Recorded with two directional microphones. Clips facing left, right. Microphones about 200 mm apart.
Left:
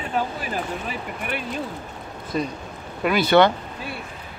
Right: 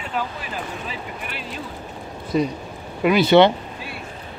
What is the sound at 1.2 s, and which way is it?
Vehicle, 50° left (ahead or behind).